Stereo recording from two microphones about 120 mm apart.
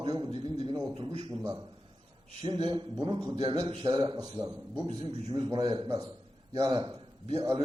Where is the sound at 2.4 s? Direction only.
40° right (ahead or behind).